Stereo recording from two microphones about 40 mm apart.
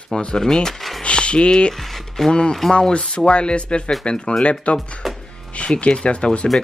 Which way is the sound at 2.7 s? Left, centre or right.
Left.